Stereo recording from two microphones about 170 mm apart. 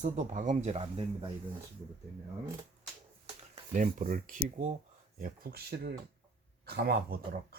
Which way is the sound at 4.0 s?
50° right (ahead or behind).